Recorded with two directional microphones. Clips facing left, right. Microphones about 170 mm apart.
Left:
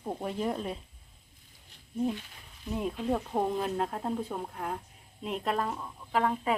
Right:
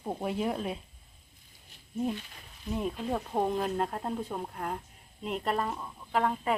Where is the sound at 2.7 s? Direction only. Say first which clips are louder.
Left 1 dB; centre (ahead or behind).